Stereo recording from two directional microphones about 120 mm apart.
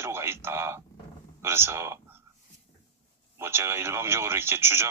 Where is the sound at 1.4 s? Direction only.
20° right (ahead or behind).